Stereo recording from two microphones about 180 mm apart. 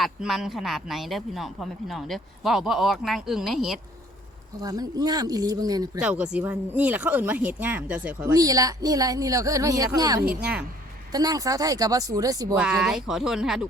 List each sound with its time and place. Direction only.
0.0 s speech: centre (ahead or behind)
4.6 s a woman's voice: 20° right (ahead or behind)
6.0 s speech: 5° right (ahead or behind)
8.3 s a woman's voice: 20° right (ahead or behind)
10.4 s speech: 5° right (ahead or behind)
11.1 s a woman's voice: 20° right (ahead or behind)
12.5 s speech: 5° right (ahead or behind)